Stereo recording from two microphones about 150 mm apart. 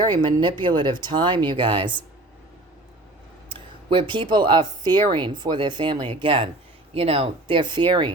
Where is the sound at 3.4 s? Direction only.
35° right (ahead or behind).